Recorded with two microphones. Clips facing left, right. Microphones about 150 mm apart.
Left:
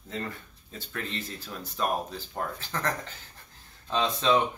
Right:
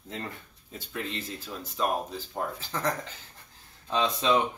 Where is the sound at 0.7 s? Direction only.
5° right (ahead or behind).